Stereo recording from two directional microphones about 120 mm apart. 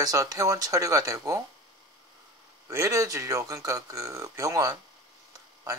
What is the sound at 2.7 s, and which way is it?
A man's voice, 25° right (ahead or behind).